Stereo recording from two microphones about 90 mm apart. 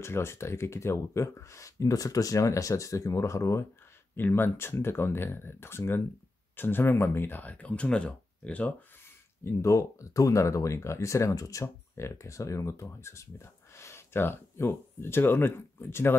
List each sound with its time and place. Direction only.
0.0 s speech: 30° left (ahead or behind)
9.4 s speech: 35° left (ahead or behind)